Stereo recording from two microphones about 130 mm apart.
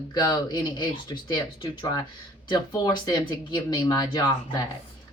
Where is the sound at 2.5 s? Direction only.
30° left (ahead or behind).